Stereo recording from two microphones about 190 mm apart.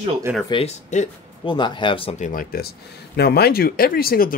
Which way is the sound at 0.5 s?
35° left (ahead or behind).